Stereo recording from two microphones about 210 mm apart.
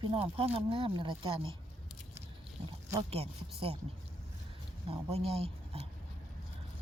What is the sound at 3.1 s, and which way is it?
Speech, 30° right (ahead or behind).